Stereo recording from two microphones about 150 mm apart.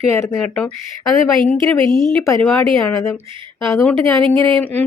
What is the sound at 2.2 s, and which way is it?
Speech, 15° left (ahead or behind).